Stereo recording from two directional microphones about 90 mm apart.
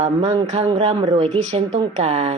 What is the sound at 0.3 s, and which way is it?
A woman's voice, 80° right.